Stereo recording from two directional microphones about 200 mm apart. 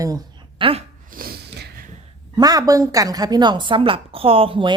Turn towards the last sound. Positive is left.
turn(degrees=-25)  # may be behind; listen again after turning